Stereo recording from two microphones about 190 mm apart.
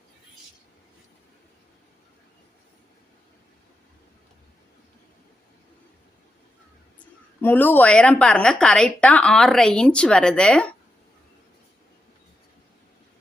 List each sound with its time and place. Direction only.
7.4 s a woman's voice: 10° left (ahead or behind)